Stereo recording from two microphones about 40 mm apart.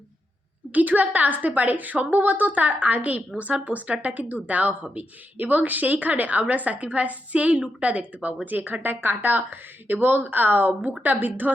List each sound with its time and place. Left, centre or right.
0.7 s a woman's voice: right